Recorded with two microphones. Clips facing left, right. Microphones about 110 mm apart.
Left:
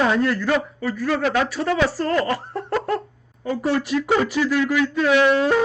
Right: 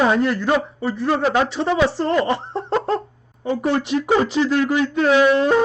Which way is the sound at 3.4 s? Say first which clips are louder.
Right 2 dB; 25° right (ahead or behind).